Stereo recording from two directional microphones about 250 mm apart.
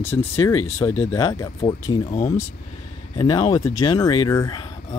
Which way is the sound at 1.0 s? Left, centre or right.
Centre.